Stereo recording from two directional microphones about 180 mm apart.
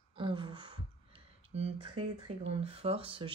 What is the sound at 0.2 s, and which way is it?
Gasp, 25° right (ahead or behind).